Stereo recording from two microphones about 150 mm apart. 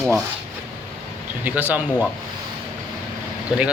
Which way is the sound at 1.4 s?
10° right (ahead or behind).